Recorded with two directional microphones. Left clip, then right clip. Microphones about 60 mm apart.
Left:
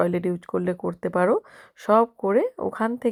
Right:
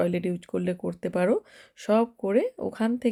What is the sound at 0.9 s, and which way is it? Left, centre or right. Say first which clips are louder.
Speech: left 4 dB; right.